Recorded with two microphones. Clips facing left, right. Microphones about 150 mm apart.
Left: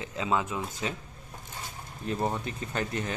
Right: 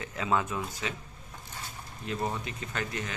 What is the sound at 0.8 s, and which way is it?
Speech, 35° left (ahead or behind).